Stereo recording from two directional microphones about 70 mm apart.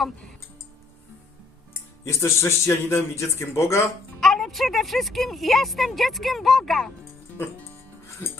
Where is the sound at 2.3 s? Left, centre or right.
Left.